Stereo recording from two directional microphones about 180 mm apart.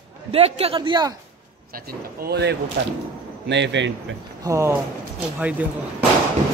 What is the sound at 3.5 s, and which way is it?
Speech, 75° right (ahead or behind).